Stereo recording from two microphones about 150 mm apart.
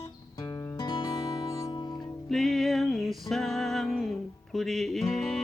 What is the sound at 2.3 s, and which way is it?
Music, centre (ahead or behind).